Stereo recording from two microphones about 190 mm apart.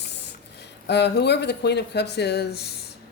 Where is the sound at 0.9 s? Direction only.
65° left (ahead or behind).